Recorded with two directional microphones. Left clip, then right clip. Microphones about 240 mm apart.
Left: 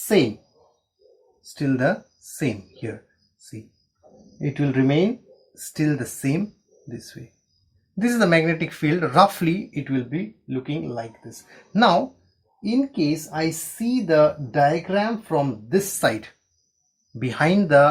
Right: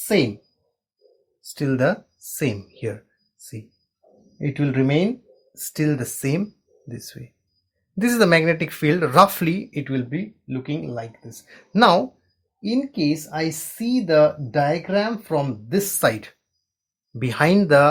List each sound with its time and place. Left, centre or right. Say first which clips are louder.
1.4 s speech: right 1 dB; right
4.4 s speech: even; right